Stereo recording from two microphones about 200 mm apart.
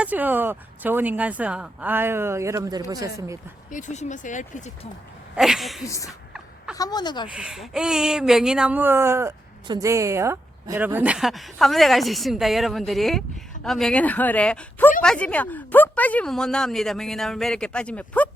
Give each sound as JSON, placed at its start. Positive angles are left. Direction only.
{"t": 0.0, "sound": "speech", "side_deg": -10}
{"t": 3.7, "sound": "speech", "side_deg": 40}
{"t": 5.4, "sound": "speech", "side_deg": 0}
{"t": 6.7, "sound": "speech", "side_deg": 20}
{"t": 7.3, "sound": "speech", "side_deg": -5}